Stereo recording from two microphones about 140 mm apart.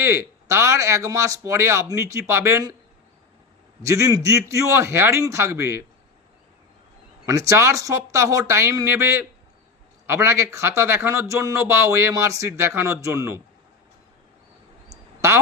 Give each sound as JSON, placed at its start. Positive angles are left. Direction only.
{"t": 0.0, "sound": "speech", "side_deg": -20}
{"t": 3.8, "sound": "speech", "side_deg": -25}
{"t": 7.3, "sound": "speech", "side_deg": -20}